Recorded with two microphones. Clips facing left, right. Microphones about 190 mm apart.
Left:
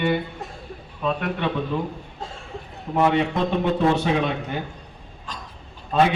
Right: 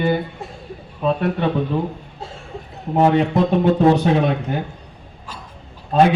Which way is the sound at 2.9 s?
40° right (ahead or behind).